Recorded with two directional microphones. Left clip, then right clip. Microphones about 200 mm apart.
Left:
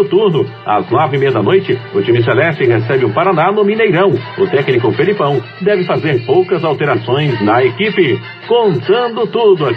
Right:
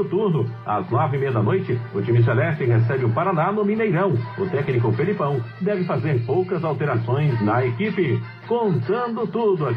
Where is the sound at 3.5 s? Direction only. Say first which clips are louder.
Left 10 dB; 40° left (ahead or behind).